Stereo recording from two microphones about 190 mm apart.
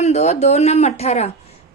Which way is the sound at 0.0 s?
35° left (ahead or behind).